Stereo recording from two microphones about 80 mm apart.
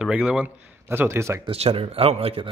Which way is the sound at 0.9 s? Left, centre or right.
Right.